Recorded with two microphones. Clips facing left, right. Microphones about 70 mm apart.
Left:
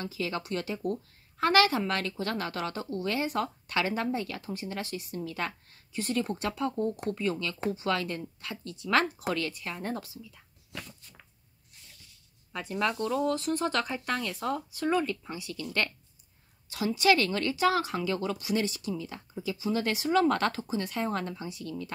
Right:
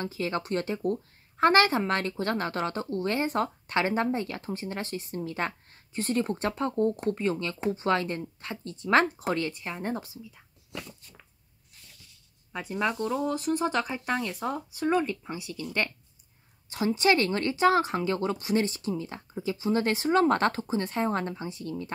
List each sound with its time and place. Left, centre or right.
0.0 s a woman's voice: right
12.5 s a woman's voice: centre; by 21.9 s right